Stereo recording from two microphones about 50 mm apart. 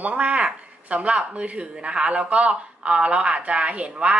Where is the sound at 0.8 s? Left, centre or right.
Right.